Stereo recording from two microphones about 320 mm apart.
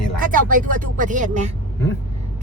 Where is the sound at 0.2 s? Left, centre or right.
Right.